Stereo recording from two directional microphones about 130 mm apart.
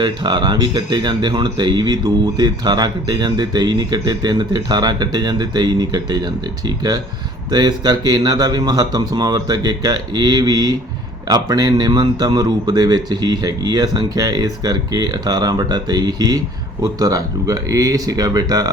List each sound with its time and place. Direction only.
0.0 s speech: 35° right (ahead or behind)